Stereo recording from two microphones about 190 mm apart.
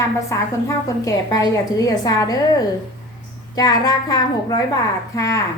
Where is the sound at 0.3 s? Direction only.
15° left (ahead or behind).